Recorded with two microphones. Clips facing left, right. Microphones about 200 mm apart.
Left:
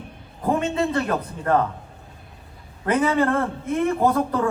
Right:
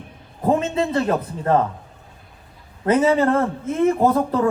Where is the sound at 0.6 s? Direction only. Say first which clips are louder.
Right 2 dB; 25° right (ahead or behind).